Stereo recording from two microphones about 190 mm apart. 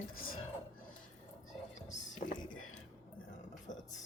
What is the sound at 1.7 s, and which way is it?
Whispering, 75° left (ahead or behind).